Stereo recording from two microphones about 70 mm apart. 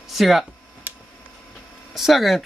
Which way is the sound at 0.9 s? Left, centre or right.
Right.